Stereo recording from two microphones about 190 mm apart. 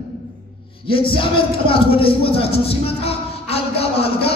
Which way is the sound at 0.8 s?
30° left (ahead or behind).